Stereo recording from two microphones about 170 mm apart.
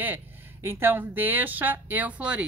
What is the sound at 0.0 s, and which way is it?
Speech, 15° right (ahead or behind).